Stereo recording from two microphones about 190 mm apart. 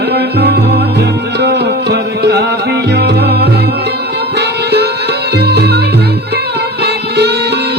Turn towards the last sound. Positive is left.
turn(degrees=-60)  # may be behind; listen again after turning